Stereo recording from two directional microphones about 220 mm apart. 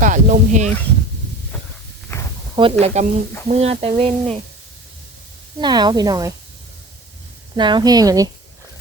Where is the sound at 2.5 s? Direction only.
25° right (ahead or behind).